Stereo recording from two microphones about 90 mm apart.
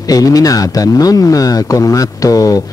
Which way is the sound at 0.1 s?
45° left (ahead or behind).